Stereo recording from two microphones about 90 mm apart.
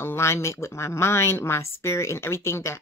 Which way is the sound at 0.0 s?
30° left (ahead or behind).